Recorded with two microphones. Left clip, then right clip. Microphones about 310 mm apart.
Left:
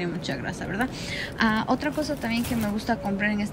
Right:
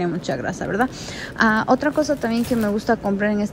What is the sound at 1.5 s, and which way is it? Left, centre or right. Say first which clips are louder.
A woman's voice: right 7 dB; left.